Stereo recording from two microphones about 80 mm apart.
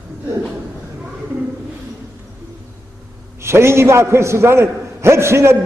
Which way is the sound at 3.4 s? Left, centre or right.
Right.